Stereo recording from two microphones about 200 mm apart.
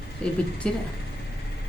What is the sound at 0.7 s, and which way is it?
Speech, 5° left (ahead or behind).